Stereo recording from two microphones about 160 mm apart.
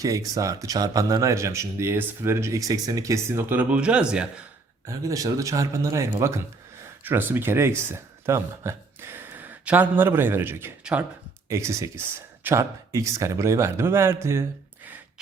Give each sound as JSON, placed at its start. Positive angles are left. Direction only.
{"t": 0.0, "sound": "speech", "side_deg": -20}
{"t": 4.9, "sound": "speech", "side_deg": -20}